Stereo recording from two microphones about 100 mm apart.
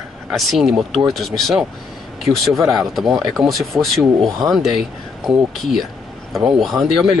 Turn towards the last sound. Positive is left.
turn(degrees=0)  # may be behind; listen again after turning